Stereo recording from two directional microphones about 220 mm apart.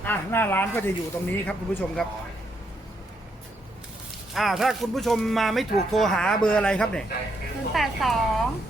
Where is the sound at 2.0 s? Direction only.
5° left (ahead or behind).